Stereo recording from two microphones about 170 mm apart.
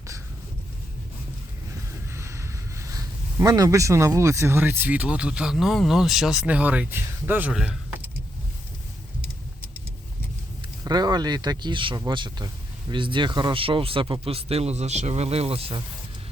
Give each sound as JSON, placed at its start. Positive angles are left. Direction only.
{"t": 2.1, "sound": "speech", "side_deg": -15}
{"t": 10.8, "sound": "speech", "side_deg": -25}